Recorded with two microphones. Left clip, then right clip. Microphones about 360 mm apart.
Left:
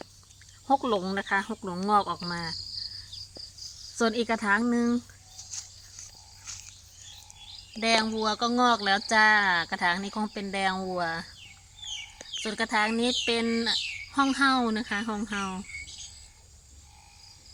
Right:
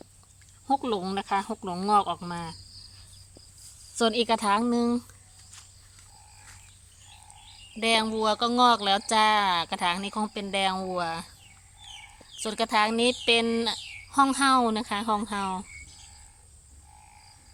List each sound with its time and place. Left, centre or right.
0.7 s speech: centre
3.9 s speech: centre
7.8 s speech: centre
12.4 s speech: centre